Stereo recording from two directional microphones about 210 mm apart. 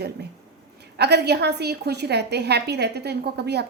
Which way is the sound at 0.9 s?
50° right (ahead or behind).